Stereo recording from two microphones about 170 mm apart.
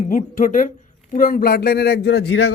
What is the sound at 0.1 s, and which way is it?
A woman's voice, 50° left (ahead or behind).